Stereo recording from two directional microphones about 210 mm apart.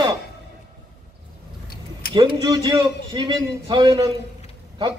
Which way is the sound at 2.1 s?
20° right (ahead or behind).